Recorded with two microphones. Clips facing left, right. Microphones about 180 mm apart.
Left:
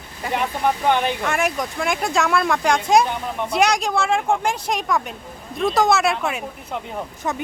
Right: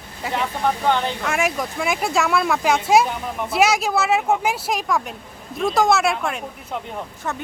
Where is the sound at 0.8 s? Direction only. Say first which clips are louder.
Left 2 dB; 15° left (ahead or behind).